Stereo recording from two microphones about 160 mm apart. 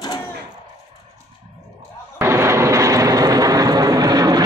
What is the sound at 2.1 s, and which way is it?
Vehicle, 15° right (ahead or behind).